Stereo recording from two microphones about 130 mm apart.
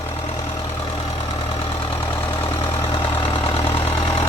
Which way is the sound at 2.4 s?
45° left (ahead or behind).